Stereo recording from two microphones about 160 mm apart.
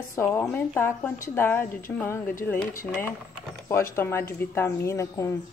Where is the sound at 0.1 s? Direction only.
15° left (ahead or behind).